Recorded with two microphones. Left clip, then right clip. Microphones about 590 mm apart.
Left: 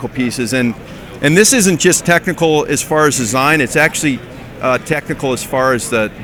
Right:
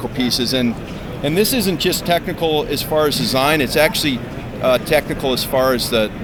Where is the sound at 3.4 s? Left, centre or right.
Left.